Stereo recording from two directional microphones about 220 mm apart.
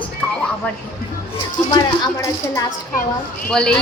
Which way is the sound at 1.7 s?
15° left (ahead or behind).